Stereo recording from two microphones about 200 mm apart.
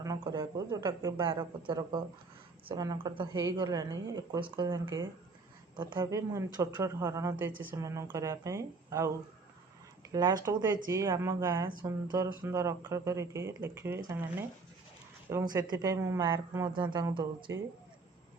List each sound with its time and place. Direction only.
0.0 s a woman's voice: 15° right (ahead or behind)